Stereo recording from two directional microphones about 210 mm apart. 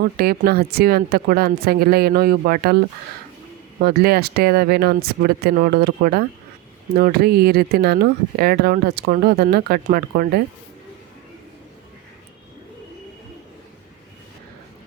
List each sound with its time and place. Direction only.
0.0 s speech: 45° right (ahead or behind)
3.8 s speech: 50° right (ahead or behind)